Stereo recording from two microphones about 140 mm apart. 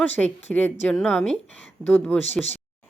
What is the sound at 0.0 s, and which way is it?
A woman's voice, 10° left (ahead or behind).